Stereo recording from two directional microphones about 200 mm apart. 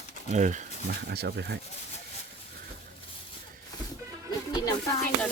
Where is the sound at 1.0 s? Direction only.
55° right (ahead or behind).